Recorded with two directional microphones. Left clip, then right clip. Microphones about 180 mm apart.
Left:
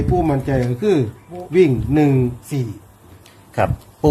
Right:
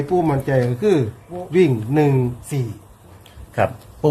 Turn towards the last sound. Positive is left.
turn(degrees=20)  # may be behind; listen again after turning